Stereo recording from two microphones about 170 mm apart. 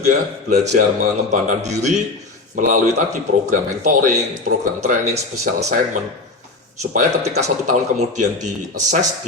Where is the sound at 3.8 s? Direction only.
45° right (ahead or behind).